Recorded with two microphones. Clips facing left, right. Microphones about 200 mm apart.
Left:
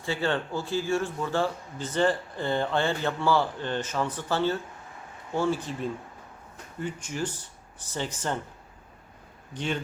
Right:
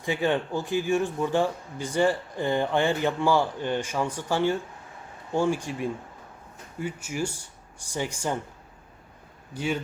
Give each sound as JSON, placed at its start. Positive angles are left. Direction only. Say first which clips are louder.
{"t": 0.0, "sound": "speech", "louder": "right 3 dB", "side_deg": -15}
{"t": 9.6, "sound": "speech", "louder": "right 2 dB", "side_deg": -10}